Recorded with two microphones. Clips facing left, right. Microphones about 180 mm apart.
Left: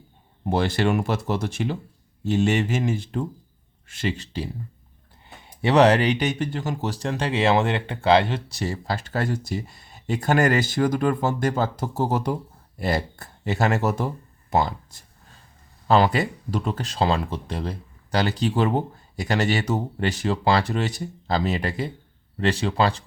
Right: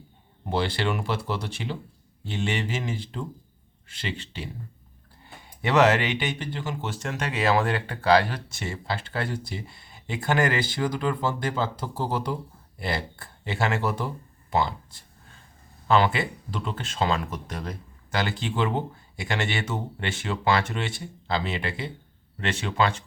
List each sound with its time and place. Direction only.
0.5 s speech: 45° left (ahead or behind)
5.6 s speech: 35° left (ahead or behind)